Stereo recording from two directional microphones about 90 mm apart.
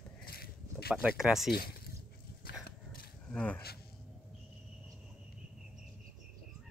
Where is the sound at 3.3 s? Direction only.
10° left (ahead or behind).